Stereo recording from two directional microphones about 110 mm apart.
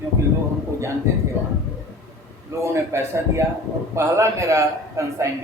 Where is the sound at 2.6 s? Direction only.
25° right (ahead or behind).